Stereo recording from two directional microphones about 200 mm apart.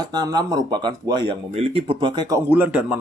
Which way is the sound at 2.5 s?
10° right (ahead or behind).